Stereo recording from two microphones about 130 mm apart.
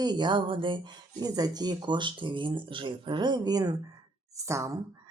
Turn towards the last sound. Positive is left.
turn(degrees=-20)  # may be behind; listen again after turning